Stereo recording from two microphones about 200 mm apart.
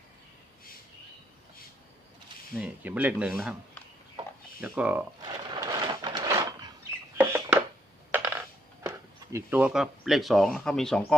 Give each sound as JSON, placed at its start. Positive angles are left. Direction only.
{"t": 2.6, "sound": "speech", "side_deg": -5}
{"t": 4.6, "sound": "speech", "side_deg": -5}
{"t": 5.5, "sound": "a sound", "side_deg": -20}
{"t": 7.2, "sound": "rodents", "side_deg": -10}
{"t": 8.1, "sound": "coin", "side_deg": -10}